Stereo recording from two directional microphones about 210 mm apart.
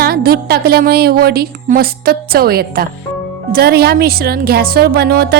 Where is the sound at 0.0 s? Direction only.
45° right (ahead or behind).